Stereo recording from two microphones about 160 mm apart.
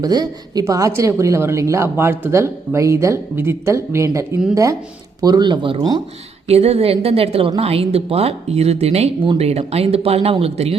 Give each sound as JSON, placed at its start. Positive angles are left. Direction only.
{"t": 0.0, "sound": "a woman's voice", "side_deg": -25}
{"t": 6.5, "sound": "speech", "side_deg": -40}